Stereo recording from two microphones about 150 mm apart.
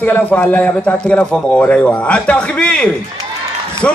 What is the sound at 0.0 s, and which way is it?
A man's voice, 10° left (ahead or behind).